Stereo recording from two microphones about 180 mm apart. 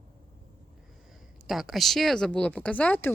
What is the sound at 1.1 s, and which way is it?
Speech, centre (ahead or behind).